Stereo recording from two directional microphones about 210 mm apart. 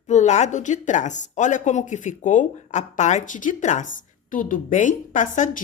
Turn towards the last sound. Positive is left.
turn(degrees=35)  # may be behind; listen again after turning